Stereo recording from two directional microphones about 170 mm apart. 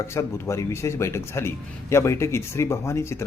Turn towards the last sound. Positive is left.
turn(degrees=15)  # may be behind; listen again after turning